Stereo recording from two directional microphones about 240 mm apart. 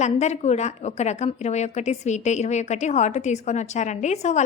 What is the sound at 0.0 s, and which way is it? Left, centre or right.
A woman's voice, left.